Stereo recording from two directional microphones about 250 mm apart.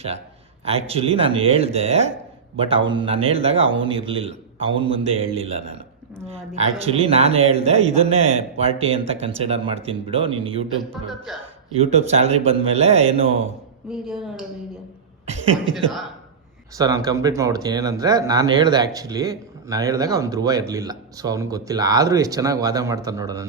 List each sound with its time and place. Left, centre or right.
0.6 s a man's voice: right
11.3 s speech: centre
11.8 s a man's voice: right
13.9 s speech: centre
15.7 s speech: centre
16.7 s speech: centre